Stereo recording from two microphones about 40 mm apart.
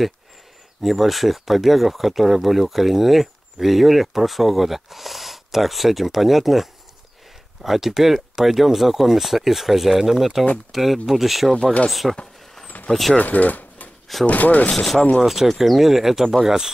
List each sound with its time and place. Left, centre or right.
0.8 s speech: centre
12.7 s vehicle: left
13.2 s speech: left
15.0 s speech: left
15.2 s speech: centre